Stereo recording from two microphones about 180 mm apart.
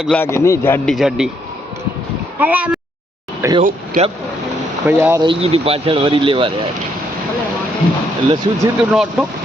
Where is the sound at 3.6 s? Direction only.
45° right (ahead or behind).